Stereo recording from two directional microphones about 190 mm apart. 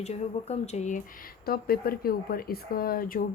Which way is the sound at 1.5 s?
55° left (ahead or behind).